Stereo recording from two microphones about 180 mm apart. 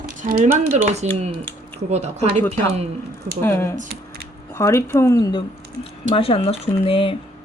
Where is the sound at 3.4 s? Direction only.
15° left (ahead or behind); by 7.1 s 30° left (ahead or behind).